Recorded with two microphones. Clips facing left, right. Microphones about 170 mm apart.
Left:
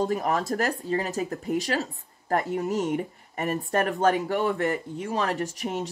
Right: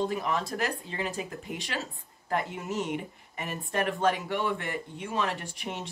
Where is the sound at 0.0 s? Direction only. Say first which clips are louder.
Left 4 dB; 45° left (ahead or behind).